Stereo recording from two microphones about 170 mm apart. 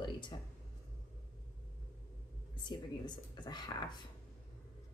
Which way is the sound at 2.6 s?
25° left (ahead or behind).